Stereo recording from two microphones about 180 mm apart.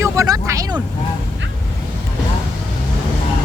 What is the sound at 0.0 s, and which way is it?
Vehicle, 15° right (ahead or behind).